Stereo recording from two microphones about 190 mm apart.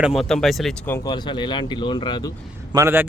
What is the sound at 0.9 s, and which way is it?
Speech, 10° left (ahead or behind).